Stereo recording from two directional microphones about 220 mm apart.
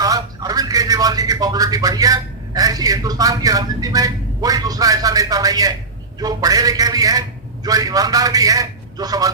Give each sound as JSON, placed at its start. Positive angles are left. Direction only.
{"t": 0.0, "sound": "a man's voice", "side_deg": -15}